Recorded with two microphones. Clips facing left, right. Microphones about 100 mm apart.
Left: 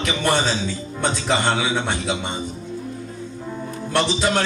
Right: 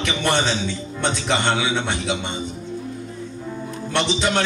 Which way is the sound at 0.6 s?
40° left (ahead or behind).